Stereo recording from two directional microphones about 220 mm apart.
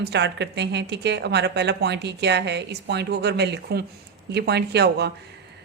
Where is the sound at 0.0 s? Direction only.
50° right (ahead or behind).